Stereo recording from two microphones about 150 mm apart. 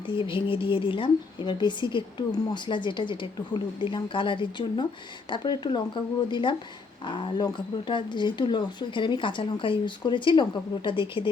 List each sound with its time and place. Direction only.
0.0 s speech: 35° left (ahead or behind)